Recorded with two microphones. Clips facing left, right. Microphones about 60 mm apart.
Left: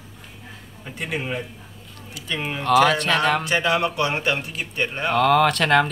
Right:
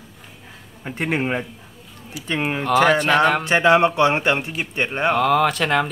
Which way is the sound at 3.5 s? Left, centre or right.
Right.